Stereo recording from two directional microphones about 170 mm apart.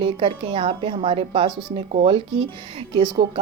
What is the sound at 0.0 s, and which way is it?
Speech, 30° right (ahead or behind).